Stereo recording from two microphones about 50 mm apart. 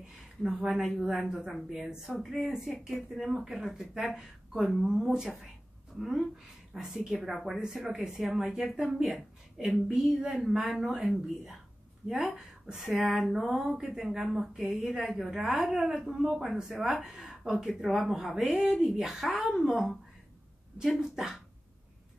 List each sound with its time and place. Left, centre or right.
0.4 s a woman's voice: centre
12.1 s speech: centre
17.8 s a woman's voice: centre
21.0 s speech: centre